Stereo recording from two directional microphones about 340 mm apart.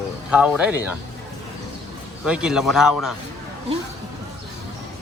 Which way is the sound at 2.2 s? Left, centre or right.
Centre.